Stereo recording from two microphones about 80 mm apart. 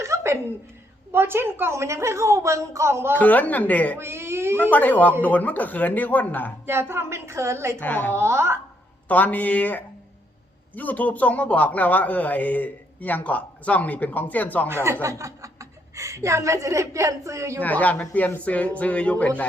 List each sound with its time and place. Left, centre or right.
0.0 s a sound: right
1.1 s a woman's voice: right
3.1 s a man's voice: left
3.9 s a woman's voice: right
4.5 s a man's voice: left
6.7 s a woman's voice: right
7.8 s a man's voice: left
8.1 s a woman's voice: right
9.0 s a man's voice: centre
15.0 s speech: right
17.6 s a man's voice: left